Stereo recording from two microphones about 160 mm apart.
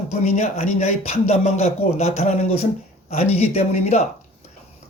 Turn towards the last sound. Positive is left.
turn(degrees=45)  # may be behind; listen again after turning